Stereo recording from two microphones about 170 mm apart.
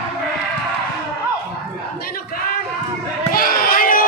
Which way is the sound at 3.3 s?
60° left (ahead or behind).